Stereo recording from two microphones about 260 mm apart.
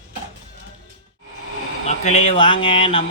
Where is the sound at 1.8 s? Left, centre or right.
Left.